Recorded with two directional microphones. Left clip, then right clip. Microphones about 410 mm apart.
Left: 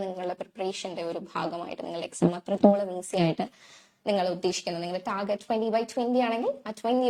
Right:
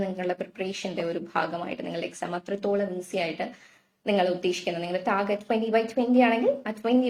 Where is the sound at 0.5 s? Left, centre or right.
Left.